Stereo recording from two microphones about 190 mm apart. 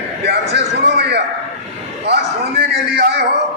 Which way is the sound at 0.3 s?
60° right (ahead or behind).